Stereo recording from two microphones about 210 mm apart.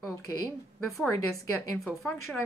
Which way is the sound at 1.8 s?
Centre (ahead or behind).